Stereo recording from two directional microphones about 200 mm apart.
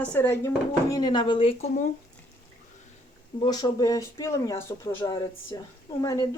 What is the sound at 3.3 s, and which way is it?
Speech, 20° left (ahead or behind).